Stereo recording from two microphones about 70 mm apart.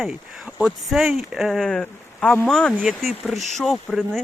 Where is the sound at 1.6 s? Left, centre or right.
Centre.